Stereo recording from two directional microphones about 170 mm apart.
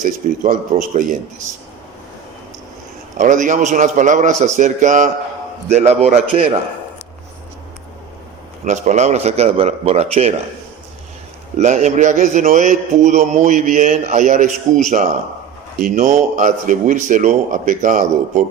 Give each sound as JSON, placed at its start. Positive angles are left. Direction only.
{"t": 0.0, "sound": "a man's voice", "side_deg": -50}
{"t": 3.2, "sound": "a man's voice", "side_deg": -45}
{"t": 8.6, "sound": "a man's voice", "side_deg": -40}
{"t": 11.5, "sound": "a man's voice", "side_deg": -45}